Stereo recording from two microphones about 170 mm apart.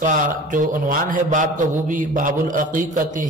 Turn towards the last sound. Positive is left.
turn(degrees=-50)  # may be behind; listen again after turning